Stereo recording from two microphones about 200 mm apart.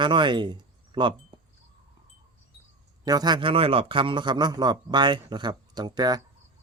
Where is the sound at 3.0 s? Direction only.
20° right (ahead or behind).